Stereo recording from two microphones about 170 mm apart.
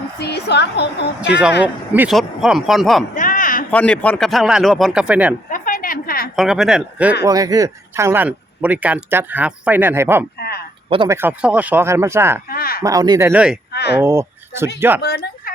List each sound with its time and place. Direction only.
0.2 s a woman's voice: 75° left (ahead or behind)
1.3 s speech: 5° right (ahead or behind)
3.2 s a sound: 50° left (ahead or behind)
3.7 s speech: 5° left (ahead or behind)
5.5 s a sound: 50° left (ahead or behind)
6.3 s speech: centre (ahead or behind)
7.3 s speech: 20° right (ahead or behind)
10.8 s speech: 30° right (ahead or behind)
11.1 s speech: 10° right (ahead or behind)
12.5 s speech: 60° left (ahead or behind)
12.8 s speech: 20° right (ahead or behind)
13.7 s speech: 75° left (ahead or behind)
14.0 s speech: 15° right (ahead or behind)
15.0 s speech: 65° left (ahead or behind)